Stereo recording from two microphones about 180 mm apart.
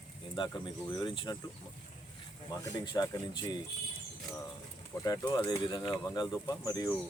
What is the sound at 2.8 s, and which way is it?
Speech, 20° left (ahead or behind).